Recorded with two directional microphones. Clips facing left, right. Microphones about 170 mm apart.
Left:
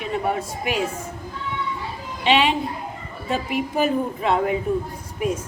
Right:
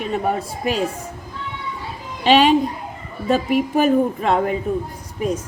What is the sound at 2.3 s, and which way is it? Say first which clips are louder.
Speech: right 5 dB; 40° right (ahead or behind).